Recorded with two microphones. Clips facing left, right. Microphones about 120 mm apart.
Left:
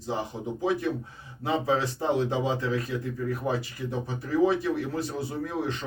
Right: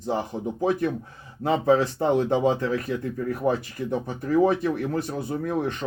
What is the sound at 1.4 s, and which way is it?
A man's voice, 55° right (ahead or behind).